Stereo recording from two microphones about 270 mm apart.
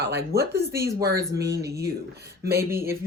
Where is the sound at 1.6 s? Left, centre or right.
Right.